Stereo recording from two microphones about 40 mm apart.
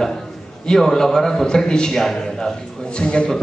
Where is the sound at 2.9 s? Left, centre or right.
Left.